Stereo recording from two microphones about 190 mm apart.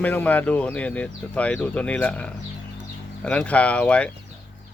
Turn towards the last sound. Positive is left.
turn(degrees=5)  # may be behind; listen again after turning